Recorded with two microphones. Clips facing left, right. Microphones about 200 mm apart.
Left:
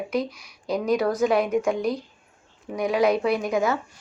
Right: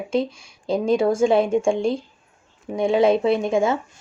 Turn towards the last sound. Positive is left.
turn(degrees=-25)  # may be behind; listen again after turning